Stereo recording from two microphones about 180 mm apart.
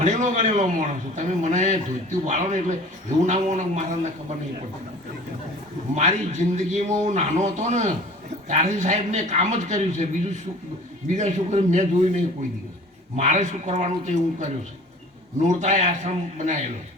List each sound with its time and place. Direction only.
0.0 s a man's voice: 40° right (ahead or behind)
5.9 s a man's voice: 40° right (ahead or behind)